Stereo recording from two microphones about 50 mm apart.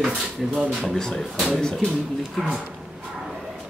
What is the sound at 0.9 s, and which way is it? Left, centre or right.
Speech, centre.